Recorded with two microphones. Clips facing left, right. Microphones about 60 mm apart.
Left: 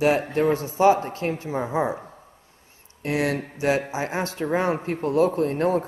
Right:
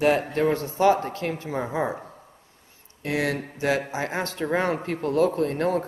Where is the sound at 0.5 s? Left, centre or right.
Right.